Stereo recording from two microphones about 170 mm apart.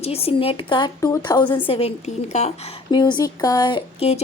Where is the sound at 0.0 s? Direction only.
35° left (ahead or behind).